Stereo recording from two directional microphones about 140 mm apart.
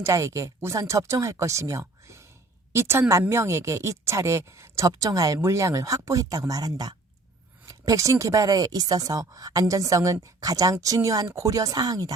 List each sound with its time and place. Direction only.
0.0 s speech: 20° right (ahead or behind)